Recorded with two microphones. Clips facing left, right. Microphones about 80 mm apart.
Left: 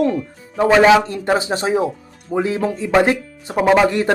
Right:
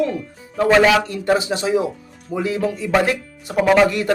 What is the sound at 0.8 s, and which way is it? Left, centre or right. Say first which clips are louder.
A man's voice: left 3 dB; left.